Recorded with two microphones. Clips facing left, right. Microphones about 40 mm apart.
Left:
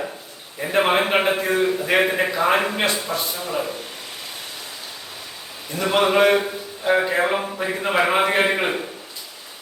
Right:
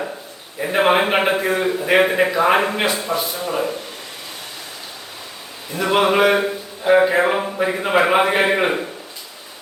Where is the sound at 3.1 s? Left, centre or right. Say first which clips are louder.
Right 3 dB; right.